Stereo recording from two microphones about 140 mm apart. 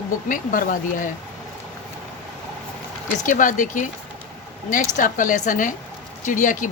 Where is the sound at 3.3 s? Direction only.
70° left (ahead or behind).